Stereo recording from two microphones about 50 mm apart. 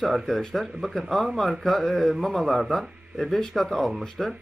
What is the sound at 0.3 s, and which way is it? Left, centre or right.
A man's voice, centre.